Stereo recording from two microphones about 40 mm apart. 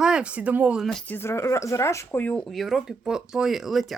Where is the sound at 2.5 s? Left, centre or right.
Centre.